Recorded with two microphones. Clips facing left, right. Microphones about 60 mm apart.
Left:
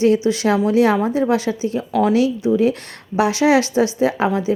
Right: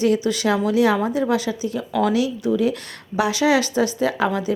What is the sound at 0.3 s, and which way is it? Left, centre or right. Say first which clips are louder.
Speech: left 3 dB; left.